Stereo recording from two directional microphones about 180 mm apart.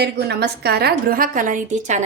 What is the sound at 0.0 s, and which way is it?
A woman's voice, 65° right (ahead or behind).